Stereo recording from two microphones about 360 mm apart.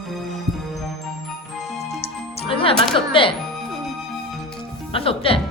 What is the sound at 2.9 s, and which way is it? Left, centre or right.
Speech, centre.